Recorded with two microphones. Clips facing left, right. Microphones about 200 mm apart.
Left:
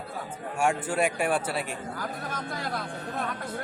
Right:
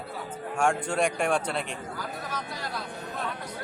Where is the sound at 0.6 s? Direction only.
5° left (ahead or behind).